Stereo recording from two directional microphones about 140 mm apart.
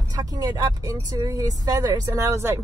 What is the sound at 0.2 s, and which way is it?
Speech, 25° right (ahead or behind).